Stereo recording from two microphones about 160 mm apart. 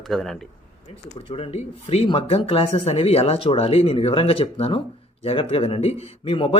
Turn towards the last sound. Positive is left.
turn(degrees=35)  # may be behind; listen again after turning